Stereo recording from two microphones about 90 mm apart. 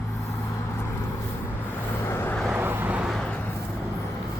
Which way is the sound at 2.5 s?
20° right (ahead or behind).